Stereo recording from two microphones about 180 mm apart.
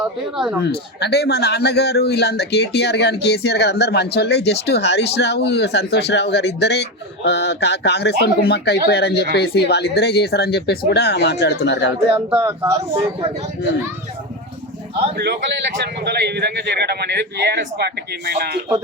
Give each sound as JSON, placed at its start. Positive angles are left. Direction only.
{"t": 0.0, "sound": "speech", "side_deg": -5}
{"t": 0.6, "sound": "speech", "side_deg": 65}
{"t": 12.3, "sound": "speech", "side_deg": -15}
{"t": 15.1, "sound": "a man's voice", "side_deg": -65}